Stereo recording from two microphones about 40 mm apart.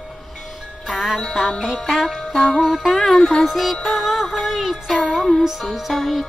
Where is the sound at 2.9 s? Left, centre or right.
Centre.